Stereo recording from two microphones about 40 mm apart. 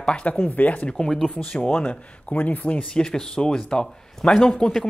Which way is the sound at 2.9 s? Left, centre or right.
Centre.